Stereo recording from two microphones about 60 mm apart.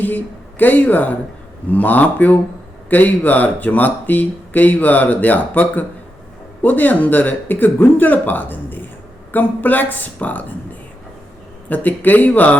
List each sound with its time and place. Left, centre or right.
0.6 s speech: left
11.7 s speech: left